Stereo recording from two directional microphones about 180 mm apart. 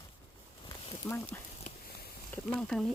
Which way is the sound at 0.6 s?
30° left (ahead or behind).